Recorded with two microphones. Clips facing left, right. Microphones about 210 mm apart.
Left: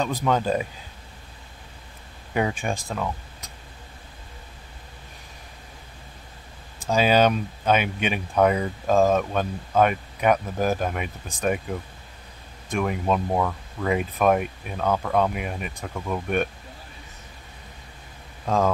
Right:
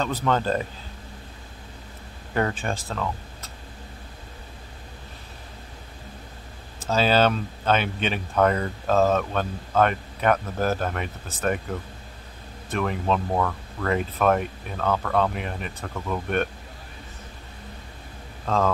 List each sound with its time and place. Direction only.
0.0 s speech: 10° left (ahead or behind)
2.3 s speech: 10° left (ahead or behind)
6.8 s speech: 15° left (ahead or behind)
18.4 s speech: 10° left (ahead or behind)